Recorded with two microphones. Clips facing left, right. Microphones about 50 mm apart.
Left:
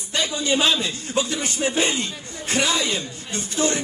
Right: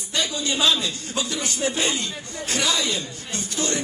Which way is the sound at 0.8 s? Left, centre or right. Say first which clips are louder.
Left 3 dB; left.